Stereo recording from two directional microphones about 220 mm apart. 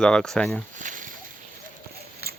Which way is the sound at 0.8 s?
35° right (ahead or behind).